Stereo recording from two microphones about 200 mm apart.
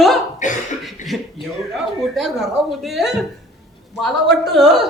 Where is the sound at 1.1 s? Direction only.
Centre (ahead or behind).